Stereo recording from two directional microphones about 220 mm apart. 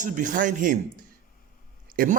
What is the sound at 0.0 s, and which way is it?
Speech, 35° right (ahead or behind).